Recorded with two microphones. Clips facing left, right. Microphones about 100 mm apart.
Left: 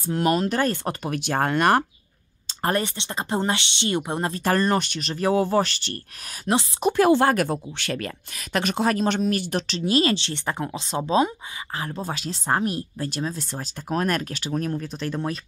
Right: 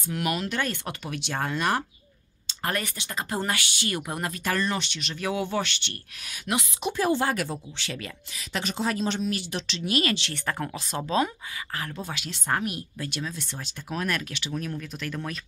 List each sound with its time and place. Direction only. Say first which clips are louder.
0.0 s speech: left 7 dB; 35° left (ahead or behind); by 1.9 s 55° left (ahead or behind)
2.4 s speech: left 6 dB; 35° left (ahead or behind)
6.9 s speech: left 7 dB; 65° left (ahead or behind); by 9.8 s 45° left (ahead or behind)
9.8 s speech: left 5 dB; 30° left (ahead or behind)